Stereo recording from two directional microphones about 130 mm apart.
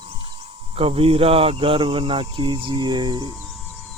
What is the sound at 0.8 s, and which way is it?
Speech, 45° right (ahead or behind).